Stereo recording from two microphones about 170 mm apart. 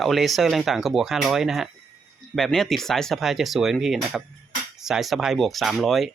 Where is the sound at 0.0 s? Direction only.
Centre (ahead or behind).